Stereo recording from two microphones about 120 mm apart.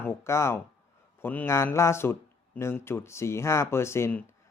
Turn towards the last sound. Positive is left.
turn(degrees=15)  # may be behind; listen again after turning